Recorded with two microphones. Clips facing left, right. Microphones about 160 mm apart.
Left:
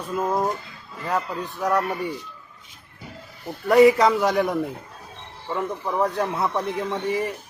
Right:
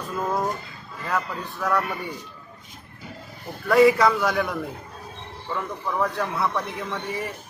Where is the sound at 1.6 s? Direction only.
20° left (ahead or behind).